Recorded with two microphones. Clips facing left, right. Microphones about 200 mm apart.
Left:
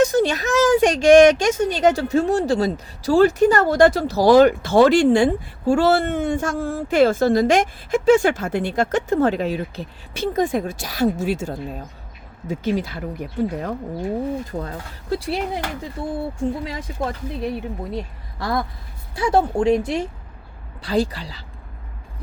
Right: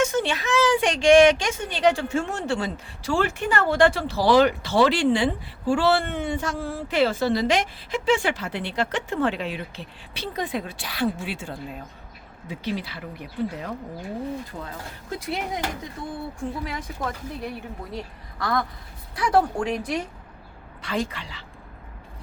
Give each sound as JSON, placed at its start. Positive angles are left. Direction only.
{"t": 0.0, "sound": "speech", "side_deg": 40}
{"t": 14.6, "sound": "speech", "side_deg": 35}
{"t": 16.6, "sound": "speech", "side_deg": 25}